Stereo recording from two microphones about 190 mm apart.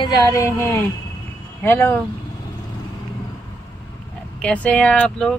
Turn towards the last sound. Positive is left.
turn(degrees=5)  # may be behind; listen again after turning